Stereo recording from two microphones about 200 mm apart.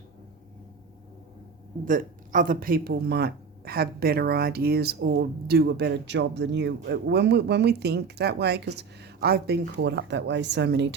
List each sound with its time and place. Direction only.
1.8 s speech: 40° right (ahead or behind); by 10.8 s 60° right (ahead or behind)